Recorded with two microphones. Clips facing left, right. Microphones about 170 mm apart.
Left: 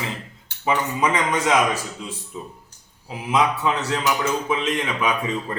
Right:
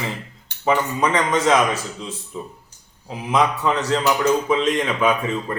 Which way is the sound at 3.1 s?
5° left (ahead or behind).